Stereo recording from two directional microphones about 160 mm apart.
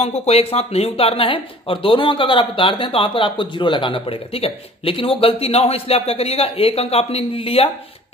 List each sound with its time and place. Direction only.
0.0 s speech: 40° left (ahead or behind)